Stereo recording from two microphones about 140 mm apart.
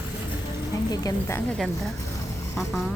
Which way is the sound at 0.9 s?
25° left (ahead or behind).